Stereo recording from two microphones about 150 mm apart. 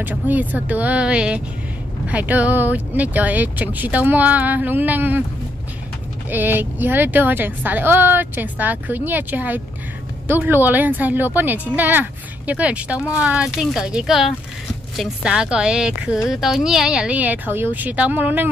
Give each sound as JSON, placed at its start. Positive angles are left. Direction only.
{"t": 0.0, "sound": "speech", "side_deg": -10}
{"t": 6.3, "sound": "a woman's voice", "side_deg": -10}